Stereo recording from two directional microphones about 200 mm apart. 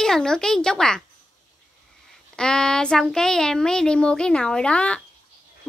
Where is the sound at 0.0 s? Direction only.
5° left (ahead or behind).